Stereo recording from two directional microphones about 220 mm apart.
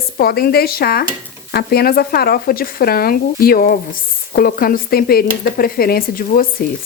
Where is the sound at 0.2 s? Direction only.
45° left (ahead or behind).